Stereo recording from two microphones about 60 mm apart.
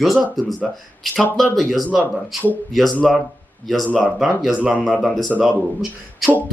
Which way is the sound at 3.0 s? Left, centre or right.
Centre.